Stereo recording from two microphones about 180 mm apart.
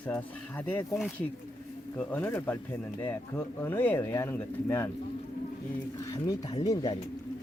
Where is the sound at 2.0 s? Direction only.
10° left (ahead or behind).